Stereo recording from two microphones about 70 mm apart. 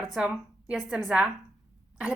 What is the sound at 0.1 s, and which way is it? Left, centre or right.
A woman's voice, centre.